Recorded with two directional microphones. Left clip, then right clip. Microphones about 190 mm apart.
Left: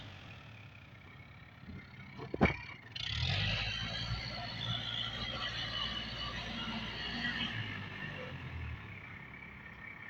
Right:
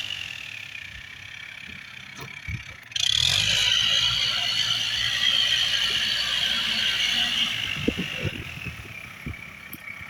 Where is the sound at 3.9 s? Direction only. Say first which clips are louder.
Right 19 dB; 20° right (ahead or behind).